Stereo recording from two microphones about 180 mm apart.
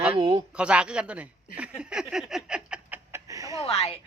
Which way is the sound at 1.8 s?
5° right (ahead or behind).